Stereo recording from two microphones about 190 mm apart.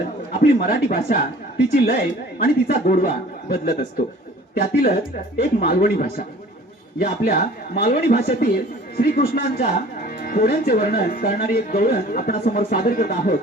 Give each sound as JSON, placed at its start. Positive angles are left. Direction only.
{"t": 0.4, "sound": "speech", "side_deg": 55}